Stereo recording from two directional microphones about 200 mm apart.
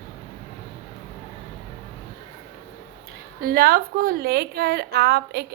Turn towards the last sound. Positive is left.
turn(degrees=-55)  # may be behind; listen again after turning